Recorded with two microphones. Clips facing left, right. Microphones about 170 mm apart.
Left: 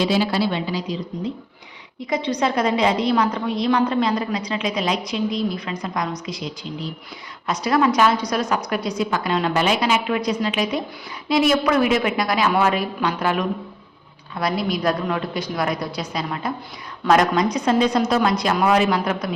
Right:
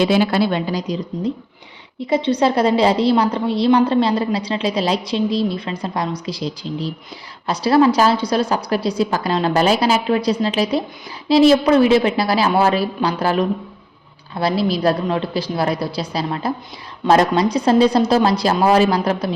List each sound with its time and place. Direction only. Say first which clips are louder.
0.0 s a woman's voice: right 4 dB; 55° right (ahead or behind)
2.0 s a woman's voice: right 5 dB; 30° right (ahead or behind)